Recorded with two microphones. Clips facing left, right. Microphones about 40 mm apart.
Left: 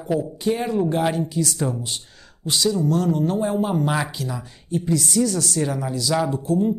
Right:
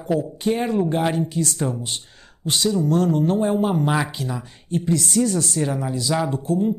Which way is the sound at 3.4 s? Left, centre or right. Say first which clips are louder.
Right 2 dB; right.